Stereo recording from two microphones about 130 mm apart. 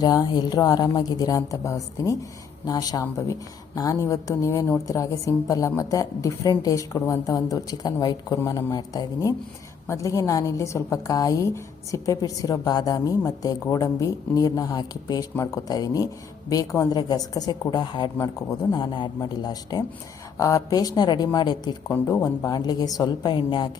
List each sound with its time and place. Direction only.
0.0 s a woman's voice: 30° left (ahead or behind)